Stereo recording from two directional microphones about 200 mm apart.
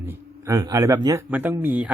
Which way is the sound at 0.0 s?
15° right (ahead or behind).